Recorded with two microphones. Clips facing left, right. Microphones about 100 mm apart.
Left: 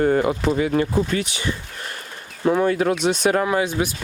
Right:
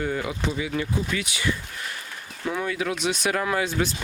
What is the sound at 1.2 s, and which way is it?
Speech, 30° left (ahead or behind).